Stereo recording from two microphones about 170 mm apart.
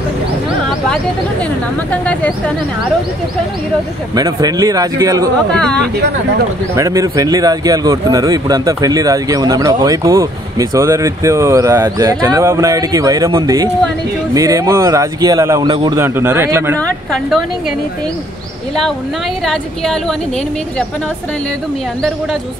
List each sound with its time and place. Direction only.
4.1 s speech: 20° right (ahead or behind)
5.5 s speech: 5° left (ahead or behind)
6.7 s speech: 20° right (ahead or behind)
16.7 s speech: 5° left (ahead or behind)
19.4 s speech: 5° left (ahead or behind)